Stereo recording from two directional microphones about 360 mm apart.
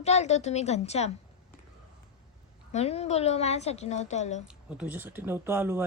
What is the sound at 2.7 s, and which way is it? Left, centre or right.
Speech, centre.